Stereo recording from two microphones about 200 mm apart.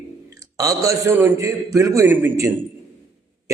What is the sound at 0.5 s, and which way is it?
A man's voice, 15° right (ahead or behind).